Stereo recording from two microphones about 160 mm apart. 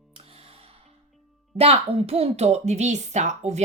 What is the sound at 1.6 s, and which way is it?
Speech, 40° right (ahead or behind).